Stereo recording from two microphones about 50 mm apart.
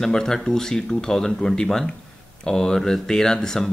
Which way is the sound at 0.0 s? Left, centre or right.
Centre.